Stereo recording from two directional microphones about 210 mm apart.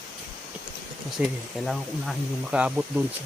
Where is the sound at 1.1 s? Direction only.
Centre (ahead or behind).